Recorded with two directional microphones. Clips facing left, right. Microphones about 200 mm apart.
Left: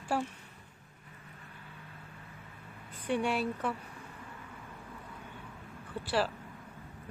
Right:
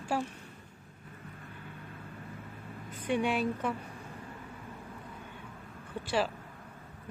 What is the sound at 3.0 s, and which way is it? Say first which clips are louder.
Speech: right 1 dB; 10° right (ahead or behind).